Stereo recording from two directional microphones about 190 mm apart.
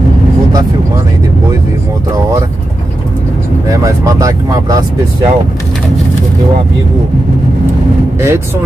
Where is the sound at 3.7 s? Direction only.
15° right (ahead or behind).